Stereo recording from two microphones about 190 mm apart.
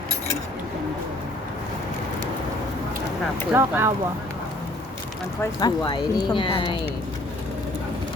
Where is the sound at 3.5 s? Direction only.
10° right (ahead or behind).